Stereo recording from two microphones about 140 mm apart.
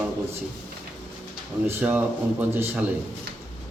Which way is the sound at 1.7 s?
15° right (ahead or behind).